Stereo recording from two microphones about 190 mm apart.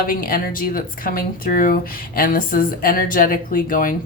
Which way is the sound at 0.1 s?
50° left (ahead or behind).